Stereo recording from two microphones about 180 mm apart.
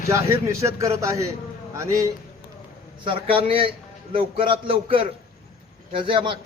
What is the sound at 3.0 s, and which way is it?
A man's voice, 30° right (ahead or behind).